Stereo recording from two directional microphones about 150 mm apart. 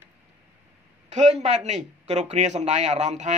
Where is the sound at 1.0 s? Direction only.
50° right (ahead or behind).